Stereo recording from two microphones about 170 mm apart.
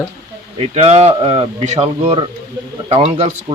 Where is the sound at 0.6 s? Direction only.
35° right (ahead or behind).